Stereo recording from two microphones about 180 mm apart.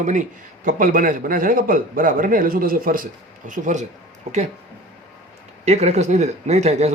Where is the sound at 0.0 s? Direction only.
45° right (ahead or behind).